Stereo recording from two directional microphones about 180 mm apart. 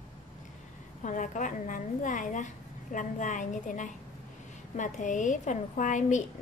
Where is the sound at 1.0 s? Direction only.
45° left (ahead or behind).